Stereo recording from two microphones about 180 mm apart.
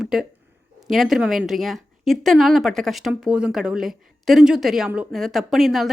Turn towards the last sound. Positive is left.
turn(degrees=0)  # may be behind; listen again after turning